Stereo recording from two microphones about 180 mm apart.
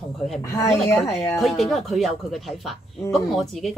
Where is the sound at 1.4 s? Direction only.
Centre (ahead or behind).